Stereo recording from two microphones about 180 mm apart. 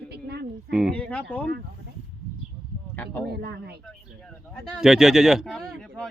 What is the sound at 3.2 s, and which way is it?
Speech, 65° right (ahead or behind).